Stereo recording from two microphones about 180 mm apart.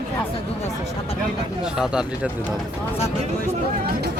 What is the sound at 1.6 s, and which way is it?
Speech, 5° right (ahead or behind).